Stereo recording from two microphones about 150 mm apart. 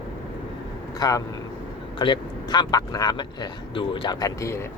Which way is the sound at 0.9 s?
25° left (ahead or behind).